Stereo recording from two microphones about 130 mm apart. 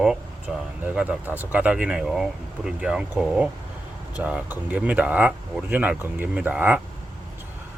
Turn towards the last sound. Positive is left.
turn(degrees=-15)  # may be behind; listen again after turning